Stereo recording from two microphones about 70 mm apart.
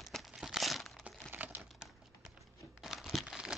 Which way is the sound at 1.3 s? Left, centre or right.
Right.